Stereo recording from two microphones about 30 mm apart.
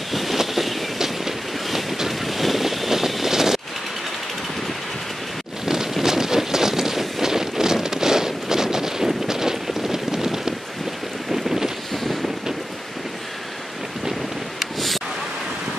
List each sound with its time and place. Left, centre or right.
0.1 s vehicle: centre
0.4 s train: centre
2.0 s boat: centre
6.0 s a sound: centre
11.3 s boat: centre
11.9 s boat: centre